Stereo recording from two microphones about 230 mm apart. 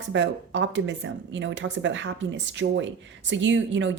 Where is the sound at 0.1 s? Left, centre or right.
Right.